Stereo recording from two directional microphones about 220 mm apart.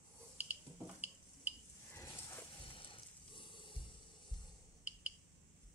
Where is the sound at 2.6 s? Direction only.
25° left (ahead or behind).